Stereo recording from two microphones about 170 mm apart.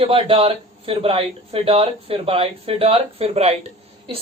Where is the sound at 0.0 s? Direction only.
35° right (ahead or behind).